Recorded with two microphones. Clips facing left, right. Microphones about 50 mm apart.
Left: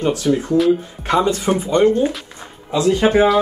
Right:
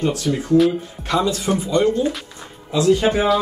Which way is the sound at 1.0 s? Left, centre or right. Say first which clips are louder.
Left 3 dB; left.